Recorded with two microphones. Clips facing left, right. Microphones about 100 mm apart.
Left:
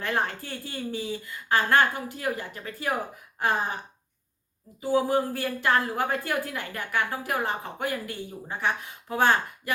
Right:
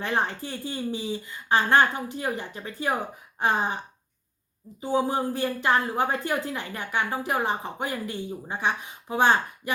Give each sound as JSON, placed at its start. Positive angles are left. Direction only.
{"t": 0.0, "sound": "a woman's voice", "side_deg": -20}
{"t": 4.8, "sound": "a woman's voice", "side_deg": -20}